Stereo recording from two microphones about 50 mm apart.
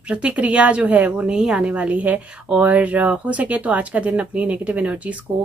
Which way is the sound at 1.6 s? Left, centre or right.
Right.